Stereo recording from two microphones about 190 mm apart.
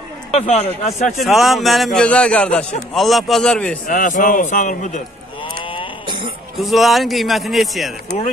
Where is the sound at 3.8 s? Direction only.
45° left (ahead or behind).